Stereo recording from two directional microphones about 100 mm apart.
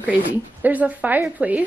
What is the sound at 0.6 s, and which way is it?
Speech, 15° right (ahead or behind).